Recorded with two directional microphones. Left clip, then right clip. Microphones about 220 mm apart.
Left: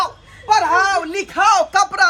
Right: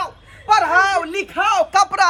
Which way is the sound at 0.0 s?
Centre (ahead or behind).